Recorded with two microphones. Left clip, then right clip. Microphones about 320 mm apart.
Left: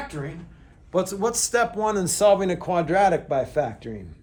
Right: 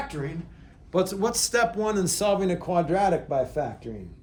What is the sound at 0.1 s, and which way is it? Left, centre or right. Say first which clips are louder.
A man's voice: right 1 dB; centre.